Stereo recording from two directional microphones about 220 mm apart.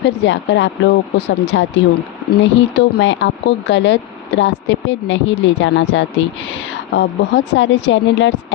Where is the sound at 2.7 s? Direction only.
55° left (ahead or behind).